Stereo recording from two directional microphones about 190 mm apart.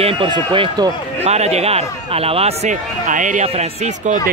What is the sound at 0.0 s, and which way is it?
Speech, 25° right (ahead or behind).